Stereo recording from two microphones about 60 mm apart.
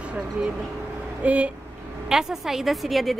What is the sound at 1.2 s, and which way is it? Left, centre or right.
Speech, right.